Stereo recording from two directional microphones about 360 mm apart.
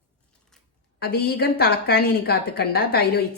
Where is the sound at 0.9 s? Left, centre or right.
Left.